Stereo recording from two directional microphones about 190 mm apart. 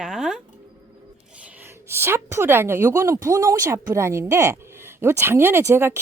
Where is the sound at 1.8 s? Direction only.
10° right (ahead or behind).